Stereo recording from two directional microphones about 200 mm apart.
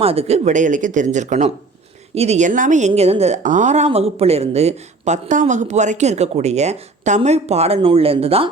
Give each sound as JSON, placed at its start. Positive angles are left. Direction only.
{"t": 0.0, "sound": "a woman's voice", "side_deg": -30}